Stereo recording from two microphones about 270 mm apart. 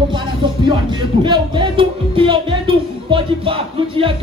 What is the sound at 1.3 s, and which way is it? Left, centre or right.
Music, centre.